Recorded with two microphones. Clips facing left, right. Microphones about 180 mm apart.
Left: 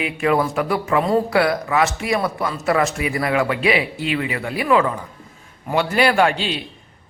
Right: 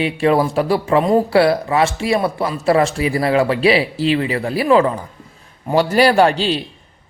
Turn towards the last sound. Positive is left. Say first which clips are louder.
# right 4 dB
turn(degrees=-35)  # may be behind; listen again after turning